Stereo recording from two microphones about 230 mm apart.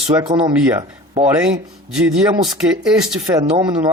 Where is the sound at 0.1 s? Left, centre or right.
Centre.